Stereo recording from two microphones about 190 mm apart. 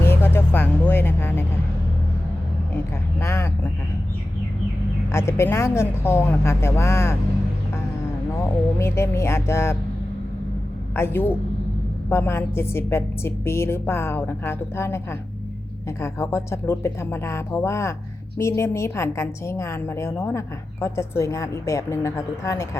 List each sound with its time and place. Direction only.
0.0 s vehicle: 10° left (ahead or behind)
3.2 s a woman's voice: 15° left (ahead or behind)
5.1 s a woman's voice: 15° left (ahead or behind)
8.8 s a woman's voice: 15° left (ahead or behind)
10.9 s a woman's voice: 10° left (ahead or behind)